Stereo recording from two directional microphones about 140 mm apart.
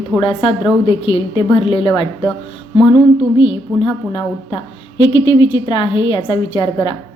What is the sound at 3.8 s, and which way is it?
A woman's voice, 35° left (ahead or behind).